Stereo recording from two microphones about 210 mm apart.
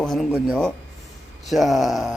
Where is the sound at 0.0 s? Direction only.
5° left (ahead or behind).